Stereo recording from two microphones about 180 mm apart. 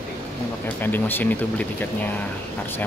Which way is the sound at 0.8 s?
10° left (ahead or behind).